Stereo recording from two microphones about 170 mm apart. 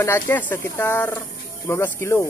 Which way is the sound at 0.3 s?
10° left (ahead or behind).